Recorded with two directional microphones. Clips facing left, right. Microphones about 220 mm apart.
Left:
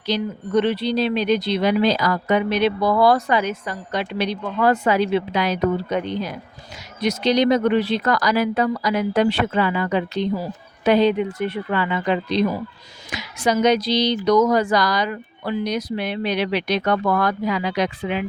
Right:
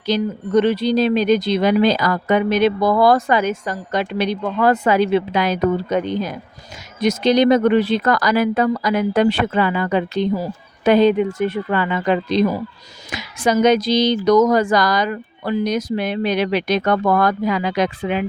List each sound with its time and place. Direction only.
0.1 s speech: 45° right (ahead or behind)